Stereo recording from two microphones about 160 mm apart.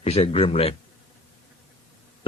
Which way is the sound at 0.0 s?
40° left (ahead or behind).